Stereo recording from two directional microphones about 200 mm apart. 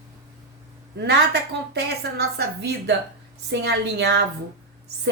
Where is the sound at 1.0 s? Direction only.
55° right (ahead or behind).